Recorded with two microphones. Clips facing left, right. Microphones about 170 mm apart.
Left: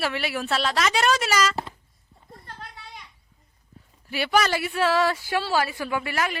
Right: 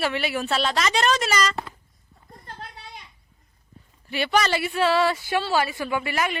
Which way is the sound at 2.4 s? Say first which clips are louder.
Right 3 dB; 30° right (ahead or behind).